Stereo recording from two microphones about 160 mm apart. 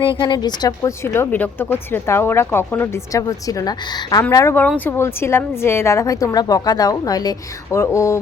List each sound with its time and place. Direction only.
0.0 s a woman's voice: 30° left (ahead or behind)